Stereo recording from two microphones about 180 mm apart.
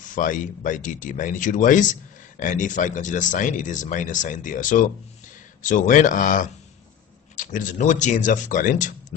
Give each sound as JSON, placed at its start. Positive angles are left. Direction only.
{"t": 0.0, "sound": "speech", "side_deg": 45}